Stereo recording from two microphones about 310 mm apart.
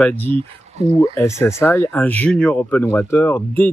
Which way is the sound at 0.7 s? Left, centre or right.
Right.